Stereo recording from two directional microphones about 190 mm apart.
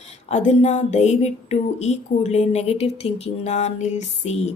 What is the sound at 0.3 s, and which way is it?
A woman's voice, 35° left (ahead or behind).